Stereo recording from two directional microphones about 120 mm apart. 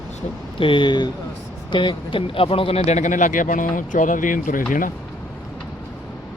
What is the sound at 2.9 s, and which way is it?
Speech, 85° left.